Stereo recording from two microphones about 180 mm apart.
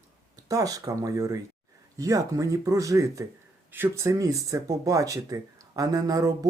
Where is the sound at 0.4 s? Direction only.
20° right (ahead or behind).